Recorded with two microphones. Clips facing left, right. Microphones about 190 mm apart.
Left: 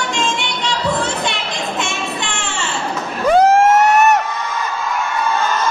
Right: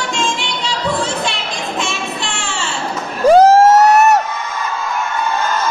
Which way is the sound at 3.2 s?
40° right (ahead or behind).